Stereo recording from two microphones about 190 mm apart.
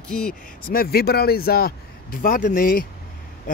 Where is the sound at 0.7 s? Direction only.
50° left (ahead or behind).